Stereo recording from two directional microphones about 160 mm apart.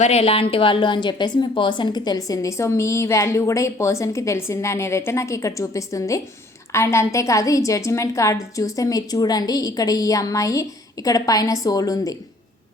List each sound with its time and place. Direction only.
0.0 s a woman's voice: 40° left (ahead or behind); by 12.1 s 20° left (ahead or behind)